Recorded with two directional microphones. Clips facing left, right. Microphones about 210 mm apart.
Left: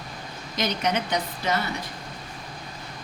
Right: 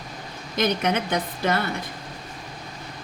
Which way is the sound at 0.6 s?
55° right (ahead or behind).